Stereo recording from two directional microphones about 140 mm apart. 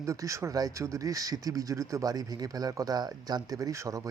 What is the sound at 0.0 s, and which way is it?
Speech, 20° right (ahead or behind).